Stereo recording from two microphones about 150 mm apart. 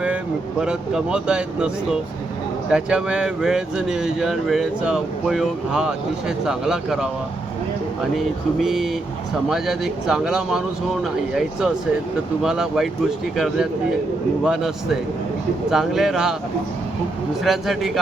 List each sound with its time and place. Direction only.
0.6 s speech: 5° right (ahead or behind)
8.1 s speech: centre (ahead or behind)
15.7 s speech: 5° right (ahead or behind)
17.4 s speech: centre (ahead or behind)